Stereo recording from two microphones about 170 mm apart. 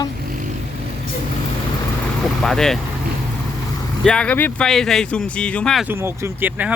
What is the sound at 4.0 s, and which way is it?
Speech, 5° left (ahead or behind).